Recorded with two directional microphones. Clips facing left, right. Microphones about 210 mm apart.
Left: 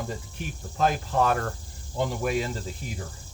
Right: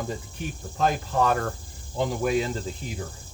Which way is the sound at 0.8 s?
5° left (ahead or behind).